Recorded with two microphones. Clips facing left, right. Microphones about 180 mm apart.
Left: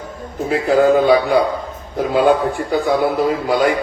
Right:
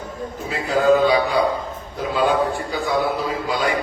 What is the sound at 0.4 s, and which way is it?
A man's voice, 55° left (ahead or behind).